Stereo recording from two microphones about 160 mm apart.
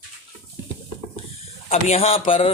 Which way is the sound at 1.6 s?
40° left (ahead or behind).